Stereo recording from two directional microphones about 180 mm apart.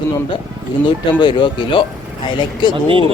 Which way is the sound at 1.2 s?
25° left (ahead or behind).